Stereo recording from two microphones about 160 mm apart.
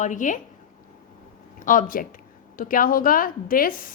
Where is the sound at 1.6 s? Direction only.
55° left (ahead or behind).